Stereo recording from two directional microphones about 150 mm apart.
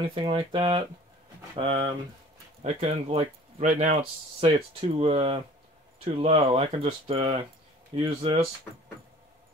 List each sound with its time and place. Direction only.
0.0 s speech: 35° right (ahead or behind)
2.6 s speech: 45° right (ahead or behind)
4.7 s speech: 40° right (ahead or behind)